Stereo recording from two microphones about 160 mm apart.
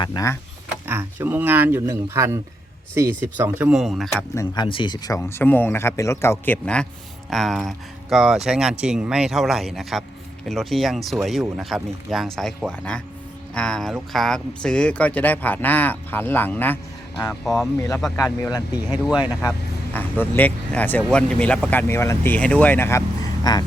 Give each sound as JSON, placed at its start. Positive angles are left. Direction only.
{"t": 0.0, "sound": "speech", "side_deg": 25}
{"t": 0.9, "sound": "speech", "side_deg": -15}
{"t": 4.4, "sound": "speech", "side_deg": 30}
{"t": 17.4, "sound": "speech", "side_deg": 0}
{"t": 17.7, "sound": "speech", "side_deg": 15}